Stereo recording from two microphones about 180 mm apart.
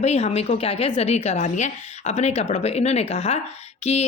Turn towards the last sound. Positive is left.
turn(degrees=35)  # may be behind; listen again after turning